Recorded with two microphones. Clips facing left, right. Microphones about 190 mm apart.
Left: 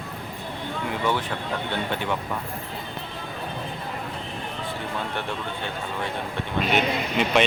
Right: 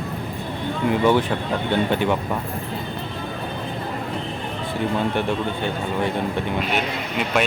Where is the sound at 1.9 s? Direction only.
15° right (ahead or behind).